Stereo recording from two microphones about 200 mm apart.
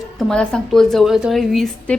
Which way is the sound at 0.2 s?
5° left (ahead or behind).